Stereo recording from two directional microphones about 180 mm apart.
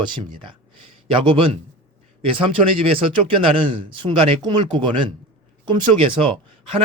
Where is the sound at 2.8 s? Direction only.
30° right (ahead or behind).